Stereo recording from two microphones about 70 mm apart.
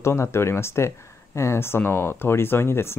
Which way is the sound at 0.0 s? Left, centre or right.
Left.